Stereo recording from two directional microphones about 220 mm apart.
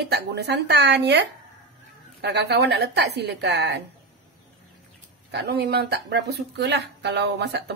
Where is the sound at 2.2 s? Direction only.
50° right (ahead or behind).